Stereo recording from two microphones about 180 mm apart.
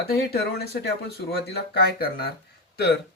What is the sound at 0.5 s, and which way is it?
Speech, 60° left (ahead or behind).